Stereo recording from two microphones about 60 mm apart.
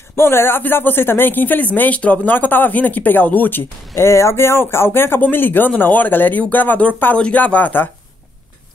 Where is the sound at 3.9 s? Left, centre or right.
Left.